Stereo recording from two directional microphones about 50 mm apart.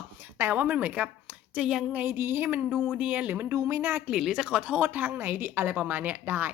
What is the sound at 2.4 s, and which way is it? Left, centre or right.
Speech, right.